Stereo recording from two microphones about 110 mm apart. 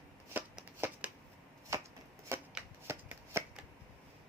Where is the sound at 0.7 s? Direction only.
20° right (ahead or behind).